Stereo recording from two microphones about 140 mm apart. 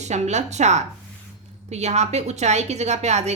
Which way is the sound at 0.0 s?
55° right (ahead or behind).